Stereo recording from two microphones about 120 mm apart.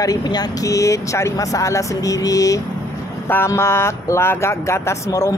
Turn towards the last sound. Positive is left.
turn(degrees=25)  # may be behind; listen again after turning